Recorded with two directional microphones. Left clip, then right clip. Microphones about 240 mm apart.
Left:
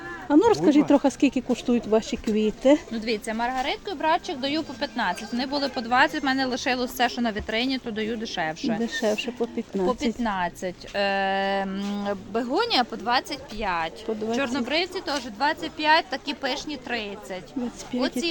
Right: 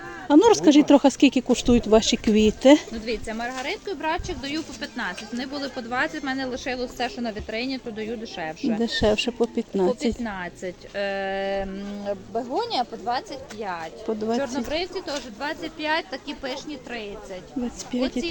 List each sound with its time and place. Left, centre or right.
0.3 s speech: centre
2.9 s speech: left
8.8 s speech: centre
10.2 s speech: left
12.5 s speech: left
17.9 s speech: centre